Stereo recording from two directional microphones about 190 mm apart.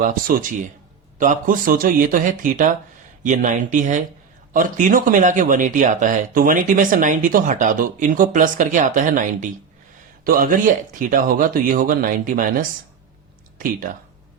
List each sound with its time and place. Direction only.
0.0 s speech: 45° right (ahead or behind)